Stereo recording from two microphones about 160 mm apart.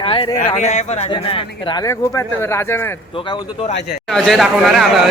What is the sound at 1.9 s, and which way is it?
Speech, 15° left (ahead or behind).